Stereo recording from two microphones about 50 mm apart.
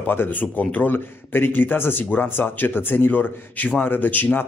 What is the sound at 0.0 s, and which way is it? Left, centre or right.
Speech, left.